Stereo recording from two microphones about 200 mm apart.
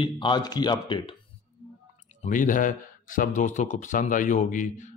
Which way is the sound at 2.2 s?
40° left (ahead or behind).